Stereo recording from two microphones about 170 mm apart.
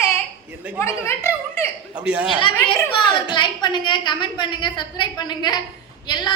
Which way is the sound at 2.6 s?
30° left (ahead or behind).